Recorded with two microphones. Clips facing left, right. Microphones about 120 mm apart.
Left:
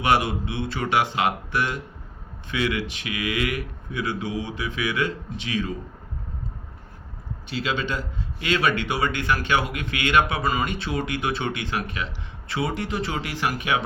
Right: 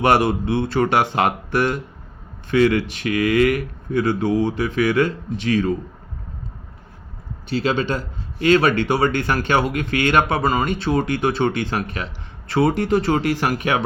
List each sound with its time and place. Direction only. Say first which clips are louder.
0.0 s speech: right 5 dB; 45° right (ahead or behind)
7.5 s speech: right 6 dB; 40° right (ahead or behind)